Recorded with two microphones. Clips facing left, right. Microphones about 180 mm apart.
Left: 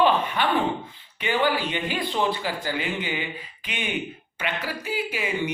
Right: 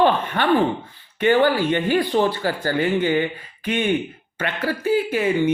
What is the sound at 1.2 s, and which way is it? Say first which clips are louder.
Speech: right 7 dB; 50° right (ahead or behind).